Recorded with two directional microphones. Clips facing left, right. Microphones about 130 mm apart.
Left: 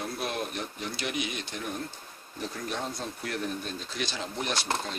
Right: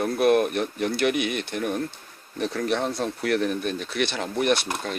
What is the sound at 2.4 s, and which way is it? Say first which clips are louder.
Speech: right 9 dB; 75° right (ahead or behind).